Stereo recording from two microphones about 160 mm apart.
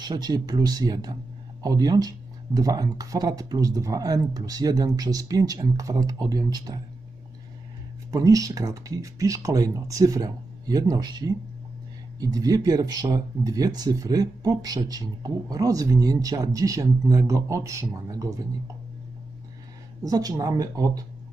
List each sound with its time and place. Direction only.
0.0 s speech: 25° right (ahead or behind)
8.1 s speech: 20° right (ahead or behind)
20.0 s speech: 20° right (ahead or behind)